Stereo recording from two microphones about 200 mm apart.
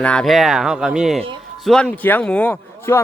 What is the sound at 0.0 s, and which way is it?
Speech, 5° left (ahead or behind).